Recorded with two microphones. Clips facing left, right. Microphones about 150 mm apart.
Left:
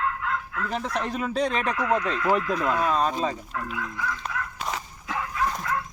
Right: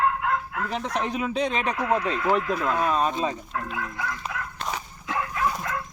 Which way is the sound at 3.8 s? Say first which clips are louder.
Even; 80° right.